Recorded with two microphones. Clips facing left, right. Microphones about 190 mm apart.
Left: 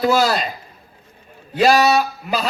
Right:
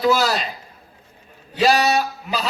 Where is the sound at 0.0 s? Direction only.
50° left (ahead or behind).